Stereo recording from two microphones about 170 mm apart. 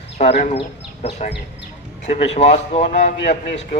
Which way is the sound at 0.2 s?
45° left (ahead or behind).